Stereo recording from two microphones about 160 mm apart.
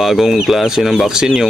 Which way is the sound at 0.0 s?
Centre (ahead or behind).